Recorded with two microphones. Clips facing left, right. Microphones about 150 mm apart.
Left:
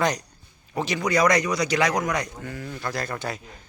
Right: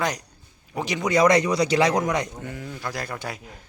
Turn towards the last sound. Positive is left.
turn(degrees=-10)  # may be behind; listen again after turning